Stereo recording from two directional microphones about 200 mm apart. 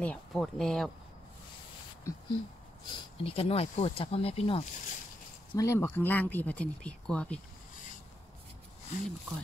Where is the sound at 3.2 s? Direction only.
30° left (ahead or behind).